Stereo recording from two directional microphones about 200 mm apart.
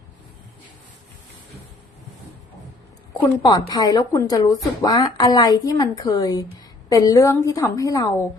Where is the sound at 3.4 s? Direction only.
20° left (ahead or behind).